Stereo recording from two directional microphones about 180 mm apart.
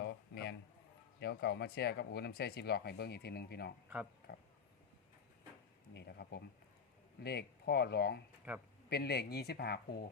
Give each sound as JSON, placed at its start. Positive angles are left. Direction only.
{"t": 0.0, "sound": "a sound", "side_deg": 70}
{"t": 1.2, "sound": "speech", "side_deg": 65}
{"t": 5.9, "sound": "speech", "side_deg": 70}
{"t": 8.5, "sound": "a man's voice", "side_deg": -10}
{"t": 8.9, "sound": "speech", "side_deg": 65}